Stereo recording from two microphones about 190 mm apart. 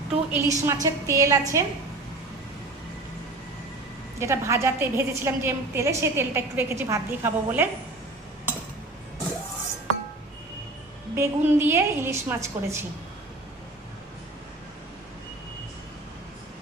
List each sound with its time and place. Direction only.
0.3 s a woman's voice: 15° right (ahead or behind)
4.2 s a woman's voice: 15° right (ahead or behind)
11.1 s a woman's voice: 10° right (ahead or behind)